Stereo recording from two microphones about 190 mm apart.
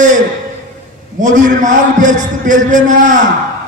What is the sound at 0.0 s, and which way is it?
A man's voice, 40° right (ahead or behind).